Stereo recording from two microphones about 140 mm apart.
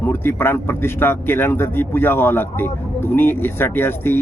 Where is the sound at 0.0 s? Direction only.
15° left (ahead or behind).